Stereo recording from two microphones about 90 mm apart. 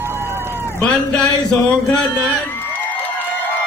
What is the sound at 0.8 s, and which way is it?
Mantra, 15° left (ahead or behind).